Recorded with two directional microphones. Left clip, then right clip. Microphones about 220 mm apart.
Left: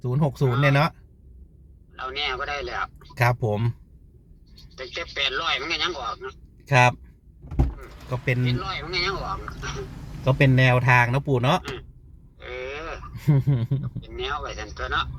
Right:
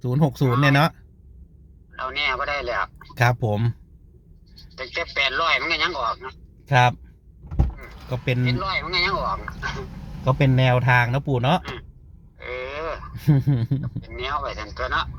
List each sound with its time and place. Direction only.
0.0 s speech: 20° right (ahead or behind)
2.0 s speech: 10° right (ahead or behind)
4.8 s a man's voice: 15° right (ahead or behind)
8.1 s a man's voice: 10° right (ahead or behind)